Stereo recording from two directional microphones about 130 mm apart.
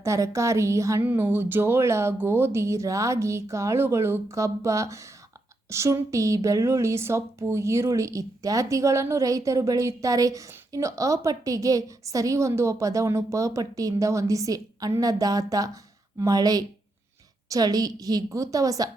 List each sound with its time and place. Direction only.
0.0 s speech: 25° right (ahead or behind)